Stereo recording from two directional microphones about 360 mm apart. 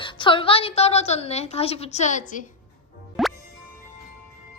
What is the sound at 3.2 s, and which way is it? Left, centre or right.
Music, centre.